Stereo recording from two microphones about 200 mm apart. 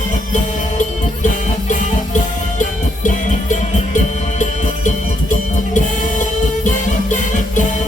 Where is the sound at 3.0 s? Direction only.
40° left (ahead or behind).